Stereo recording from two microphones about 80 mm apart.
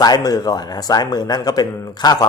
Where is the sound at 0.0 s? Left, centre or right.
Left.